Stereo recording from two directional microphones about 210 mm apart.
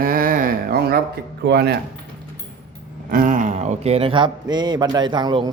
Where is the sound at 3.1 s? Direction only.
40° right (ahead or behind).